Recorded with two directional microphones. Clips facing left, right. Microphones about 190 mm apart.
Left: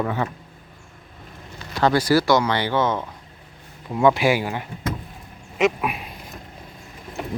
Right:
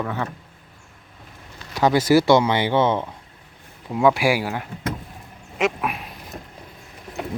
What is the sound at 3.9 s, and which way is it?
Speech, 5° right (ahead or behind).